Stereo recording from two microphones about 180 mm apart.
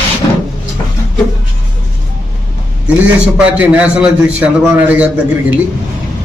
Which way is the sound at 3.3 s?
5° right (ahead or behind).